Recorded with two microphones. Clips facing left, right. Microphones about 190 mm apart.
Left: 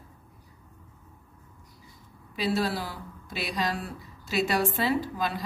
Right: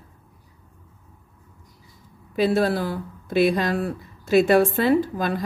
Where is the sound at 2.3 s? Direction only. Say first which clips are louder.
Right 8 dB; 50° right (ahead or behind).